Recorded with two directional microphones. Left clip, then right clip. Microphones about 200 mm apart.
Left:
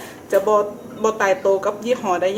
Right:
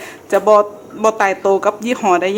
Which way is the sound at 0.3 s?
50° right (ahead or behind).